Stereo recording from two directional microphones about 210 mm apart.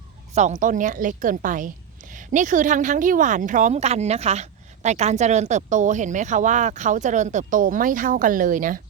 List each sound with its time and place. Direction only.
0.3 s a woman's voice: 35° right (ahead or behind)